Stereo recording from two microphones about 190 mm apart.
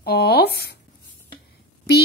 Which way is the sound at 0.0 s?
55° left (ahead or behind).